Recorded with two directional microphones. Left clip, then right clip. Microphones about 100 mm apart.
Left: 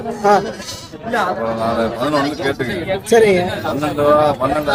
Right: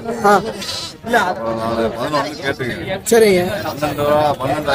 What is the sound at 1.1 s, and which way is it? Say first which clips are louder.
Speech: right 2 dB; 5° right (ahead or behind).